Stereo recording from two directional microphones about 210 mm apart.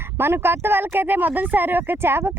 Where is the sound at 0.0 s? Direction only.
10° right (ahead or behind).